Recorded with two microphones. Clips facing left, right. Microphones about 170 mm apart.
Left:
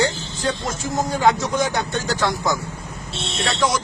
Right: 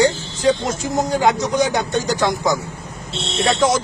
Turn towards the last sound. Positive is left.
turn(degrees=-20)  # may be behind; listen again after turning